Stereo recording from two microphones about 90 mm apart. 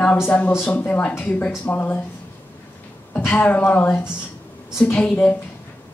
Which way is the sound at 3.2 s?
20° left (ahead or behind).